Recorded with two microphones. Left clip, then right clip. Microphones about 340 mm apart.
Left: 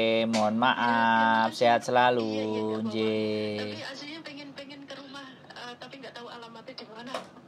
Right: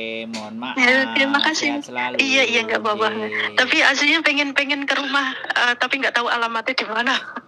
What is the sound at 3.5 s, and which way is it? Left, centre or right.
Speech, right.